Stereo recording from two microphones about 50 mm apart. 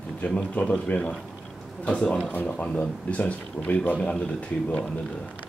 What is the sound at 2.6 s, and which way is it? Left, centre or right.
Speech, left.